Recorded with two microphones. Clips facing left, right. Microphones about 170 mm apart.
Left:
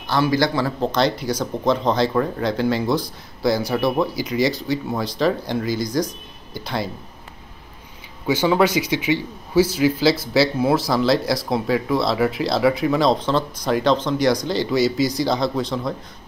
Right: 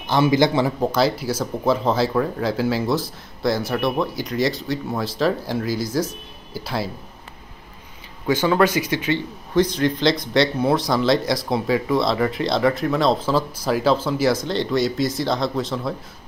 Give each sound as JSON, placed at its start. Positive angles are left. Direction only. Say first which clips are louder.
{"t": 0.0, "sound": "a man's voice", "louder": "right 2 dB", "side_deg": -20}
{"t": 0.7, "sound": "speech", "louder": "even", "side_deg": -5}
{"t": 8.3, "sound": "speech", "louder": "even", "side_deg": 10}